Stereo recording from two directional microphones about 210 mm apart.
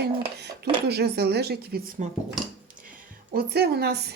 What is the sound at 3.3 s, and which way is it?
Speech, 50° right (ahead or behind).